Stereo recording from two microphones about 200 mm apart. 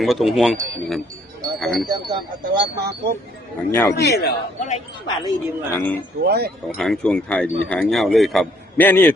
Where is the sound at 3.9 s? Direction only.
50° left (ahead or behind).